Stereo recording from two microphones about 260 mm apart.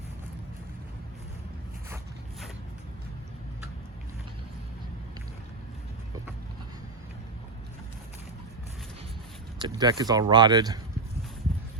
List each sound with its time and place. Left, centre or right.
9.6 s speech: centre